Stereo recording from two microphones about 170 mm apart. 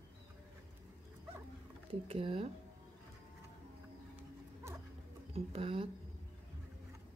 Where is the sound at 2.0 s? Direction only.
35° right (ahead or behind).